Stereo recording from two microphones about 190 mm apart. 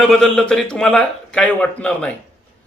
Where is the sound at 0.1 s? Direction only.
5° left (ahead or behind).